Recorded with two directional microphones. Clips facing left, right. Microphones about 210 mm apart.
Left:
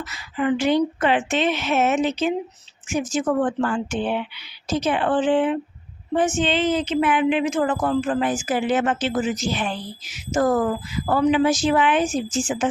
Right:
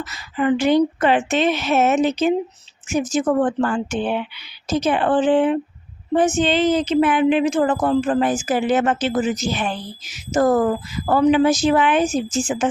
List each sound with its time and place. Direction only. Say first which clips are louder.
0.0 s a woman's voice: right 3 dB; 40° right (ahead or behind)